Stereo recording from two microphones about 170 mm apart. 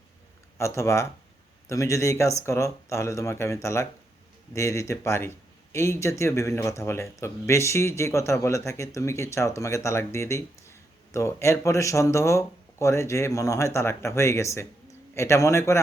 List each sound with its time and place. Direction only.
0.6 s speech: 15° left (ahead or behind)